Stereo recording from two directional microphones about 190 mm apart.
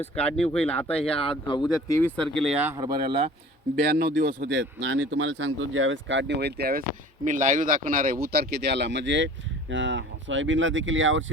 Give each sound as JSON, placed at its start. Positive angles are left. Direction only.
{"t": 0.2, "sound": "speech", "side_deg": 5}
{"t": 1.0, "sound": "speech", "side_deg": 25}
{"t": 1.9, "sound": "speech", "side_deg": 10}
{"t": 2.7, "sound": "speech", "side_deg": -20}
{"t": 3.9, "sound": "speech", "side_deg": -55}
{"t": 7.3, "sound": "speech", "side_deg": -40}